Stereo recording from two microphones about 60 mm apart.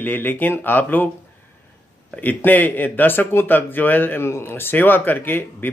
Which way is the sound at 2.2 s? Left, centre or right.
Left.